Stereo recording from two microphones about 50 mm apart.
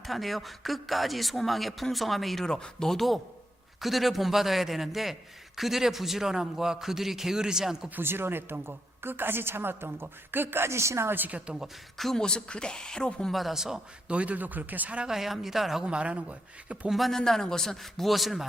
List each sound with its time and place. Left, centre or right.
0.1 s a man's voice: centre
7.9 s a woman's voice: right
11.3 s speech: right
11.9 s speech: centre
12.2 s a man's voice: centre
13.3 s a man's voice: centre
14.1 s speech: right
15.0 s speech: centre
15.8 s speech: right
17.1 s a man's voice: centre